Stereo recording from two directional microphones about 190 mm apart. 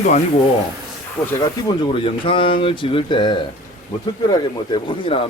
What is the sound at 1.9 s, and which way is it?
Speech, 25° left (ahead or behind).